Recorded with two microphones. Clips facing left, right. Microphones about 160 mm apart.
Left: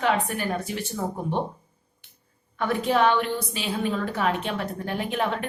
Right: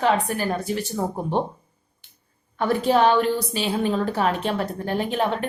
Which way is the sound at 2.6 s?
35° right (ahead or behind).